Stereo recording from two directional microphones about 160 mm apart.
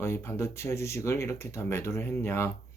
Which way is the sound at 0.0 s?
15° left (ahead or behind).